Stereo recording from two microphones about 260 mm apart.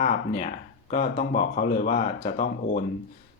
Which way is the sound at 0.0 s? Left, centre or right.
Left.